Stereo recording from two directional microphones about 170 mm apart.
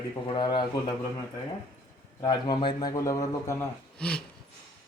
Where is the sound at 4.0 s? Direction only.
5° left (ahead or behind).